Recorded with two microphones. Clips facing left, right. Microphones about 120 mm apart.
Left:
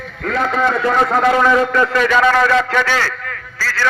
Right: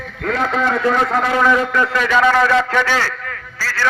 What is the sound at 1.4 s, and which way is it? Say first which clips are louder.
Speech: left 2 dB; 5° left (ahead or behind).